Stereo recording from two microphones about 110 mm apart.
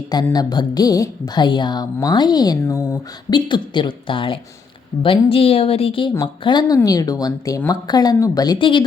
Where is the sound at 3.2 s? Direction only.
45° left (ahead or behind).